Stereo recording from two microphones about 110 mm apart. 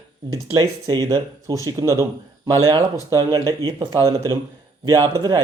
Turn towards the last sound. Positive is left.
turn(degrees=-40)  # may be behind; listen again after turning